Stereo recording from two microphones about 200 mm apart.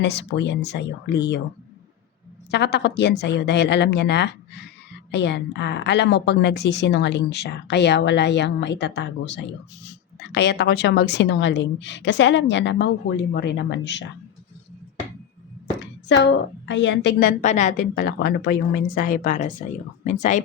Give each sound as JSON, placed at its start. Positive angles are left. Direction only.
{"t": 0.0, "sound": "a woman's voice", "side_deg": 60}
{"t": 2.5, "sound": "a woman's voice", "side_deg": 60}
{"t": 15.8, "sound": "a woman's voice", "side_deg": 60}
{"t": 18.9, "sound": "speech", "side_deg": 40}